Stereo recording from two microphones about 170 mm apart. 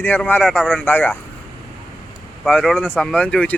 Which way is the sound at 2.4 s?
Centre (ahead or behind).